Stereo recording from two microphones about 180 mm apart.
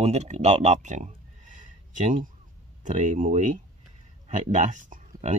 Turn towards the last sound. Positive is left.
turn(degrees=-45)  # may be behind; listen again after turning